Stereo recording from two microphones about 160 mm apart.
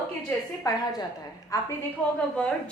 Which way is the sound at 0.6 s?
25° left (ahead or behind).